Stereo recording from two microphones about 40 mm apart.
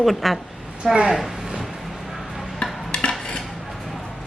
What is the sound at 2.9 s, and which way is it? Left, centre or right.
Dishes, left.